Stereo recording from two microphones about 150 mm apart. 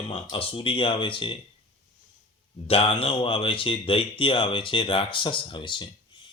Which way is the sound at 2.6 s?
40° left (ahead or behind).